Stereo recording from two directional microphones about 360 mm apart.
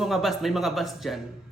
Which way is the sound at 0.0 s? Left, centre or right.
Centre.